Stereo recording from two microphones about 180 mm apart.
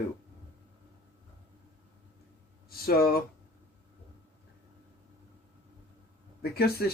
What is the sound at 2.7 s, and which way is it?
Speech, 60° left (ahead or behind).